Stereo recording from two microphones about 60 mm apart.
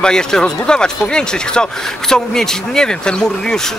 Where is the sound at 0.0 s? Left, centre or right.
Centre.